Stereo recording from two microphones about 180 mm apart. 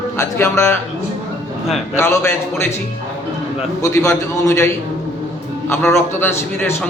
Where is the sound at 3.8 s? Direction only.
15° left (ahead or behind).